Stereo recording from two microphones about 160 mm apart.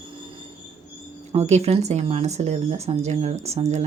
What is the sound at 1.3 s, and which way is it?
A woman's voice, 45° right (ahead or behind).